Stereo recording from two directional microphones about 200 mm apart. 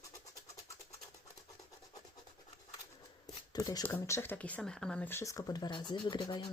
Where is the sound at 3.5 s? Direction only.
20° left (ahead or behind).